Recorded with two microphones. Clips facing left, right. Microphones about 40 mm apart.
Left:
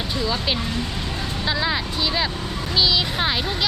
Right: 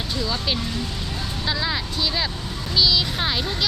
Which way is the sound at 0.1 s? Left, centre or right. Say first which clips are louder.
Left 1 dB; centre.